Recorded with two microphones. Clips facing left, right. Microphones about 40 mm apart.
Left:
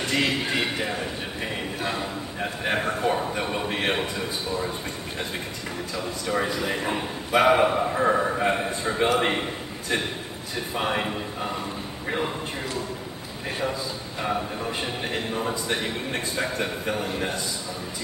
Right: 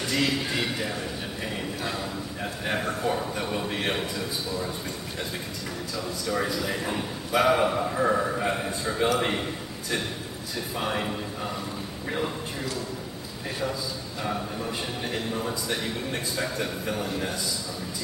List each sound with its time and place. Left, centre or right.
0.0 s a man's voice: left
5.9 s a man's voice: left
14.2 s a man's voice: left